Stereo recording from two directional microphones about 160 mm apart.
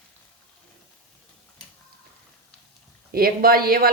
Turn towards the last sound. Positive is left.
turn(degrees=-70)  # may be behind; listen again after turning